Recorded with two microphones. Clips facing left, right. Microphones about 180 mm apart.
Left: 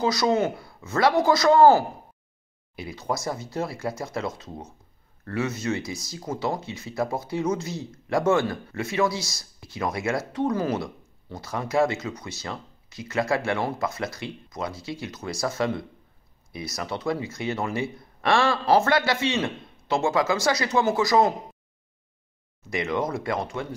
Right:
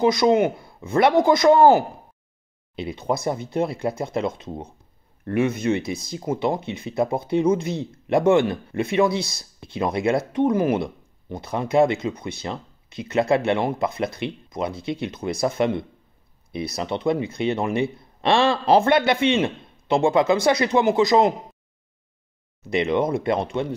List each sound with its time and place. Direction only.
0.0 s a man's voice: 20° right (ahead or behind)
22.7 s speech: 25° right (ahead or behind)